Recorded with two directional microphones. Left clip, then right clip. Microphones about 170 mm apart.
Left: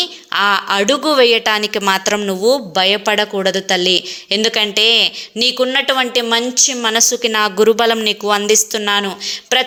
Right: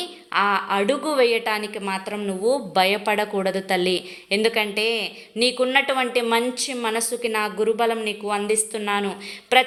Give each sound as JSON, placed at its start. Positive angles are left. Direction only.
{"t": 0.0, "sound": "a woman's voice", "side_deg": 25}
{"t": 2.7, "sound": "a woman's voice", "side_deg": 15}